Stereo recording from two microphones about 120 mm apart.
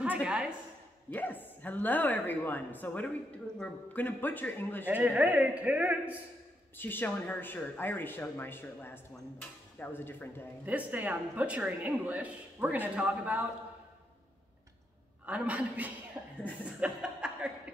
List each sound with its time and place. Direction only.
0.0 s a sound: 10° right (ahead or behind)
1.1 s speech: 15° left (ahead or behind)
4.8 s speech: 10° right (ahead or behind)
6.8 s speech: 15° left (ahead or behind)
10.6 s speech: 15° right (ahead or behind)
15.2 s speech: 10° right (ahead or behind)
16.1 s a sound: 15° right (ahead or behind)
16.8 s chuckle: 10° right (ahead or behind)